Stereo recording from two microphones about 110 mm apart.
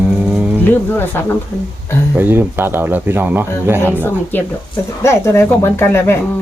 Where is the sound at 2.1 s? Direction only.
15° right (ahead or behind).